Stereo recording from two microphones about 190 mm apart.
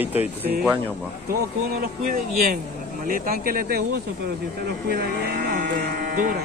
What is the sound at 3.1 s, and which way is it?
Speech, 50° right (ahead or behind).